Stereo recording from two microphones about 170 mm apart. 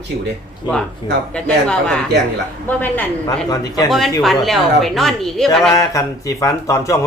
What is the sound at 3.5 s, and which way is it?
Speech, 20° left (ahead or behind).